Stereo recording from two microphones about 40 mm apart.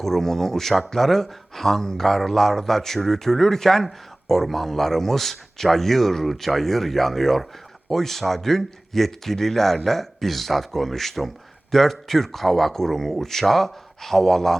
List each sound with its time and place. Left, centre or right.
0.0 s speech: centre